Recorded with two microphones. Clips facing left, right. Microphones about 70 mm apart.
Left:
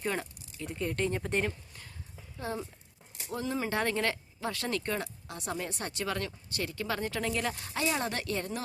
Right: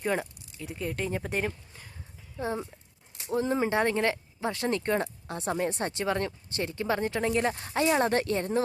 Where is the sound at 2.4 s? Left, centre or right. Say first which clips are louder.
Right 4 dB; right.